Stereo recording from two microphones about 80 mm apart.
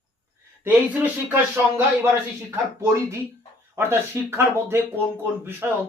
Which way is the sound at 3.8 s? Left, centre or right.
Right.